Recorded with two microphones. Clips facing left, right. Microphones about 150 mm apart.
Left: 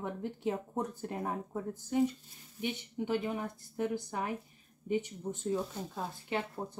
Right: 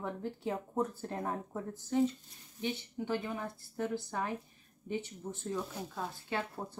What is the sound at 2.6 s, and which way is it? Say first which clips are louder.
A woman's voice: left 1 dB; 20° left (ahead or behind).